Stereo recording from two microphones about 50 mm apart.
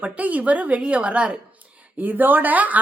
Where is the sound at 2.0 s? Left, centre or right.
Right.